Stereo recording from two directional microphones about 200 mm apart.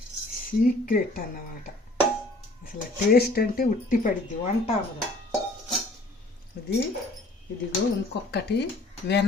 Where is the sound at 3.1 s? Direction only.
50° left (ahead or behind).